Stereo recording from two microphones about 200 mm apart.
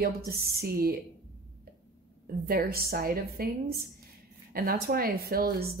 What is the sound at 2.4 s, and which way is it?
Speech, 50° right (ahead or behind).